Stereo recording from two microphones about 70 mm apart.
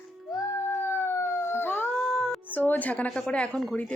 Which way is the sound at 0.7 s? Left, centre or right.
Left.